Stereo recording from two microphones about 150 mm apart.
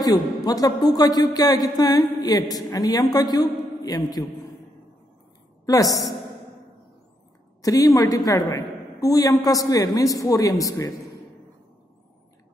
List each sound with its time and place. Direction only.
0.0 s a man's voice: 25° left (ahead or behind)
5.7 s a man's voice: 25° left (ahead or behind)
7.6 s a man's voice: 25° left (ahead or behind)